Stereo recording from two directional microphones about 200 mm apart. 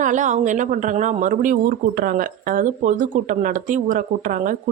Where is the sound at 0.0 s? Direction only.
40° right (ahead or behind).